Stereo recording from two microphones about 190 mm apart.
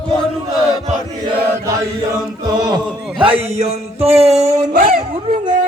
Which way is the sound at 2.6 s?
20° right (ahead or behind).